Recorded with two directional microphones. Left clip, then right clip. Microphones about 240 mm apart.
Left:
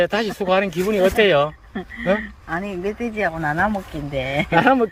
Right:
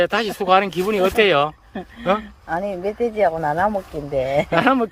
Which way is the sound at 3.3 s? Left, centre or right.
Right.